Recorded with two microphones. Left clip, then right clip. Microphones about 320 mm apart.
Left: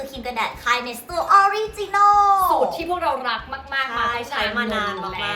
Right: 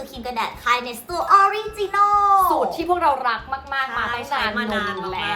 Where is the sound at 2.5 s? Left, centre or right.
Centre.